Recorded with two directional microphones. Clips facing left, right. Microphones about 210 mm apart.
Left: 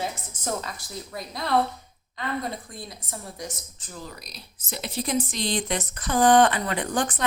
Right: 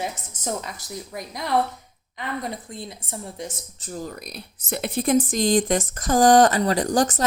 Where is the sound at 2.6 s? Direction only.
25° right (ahead or behind).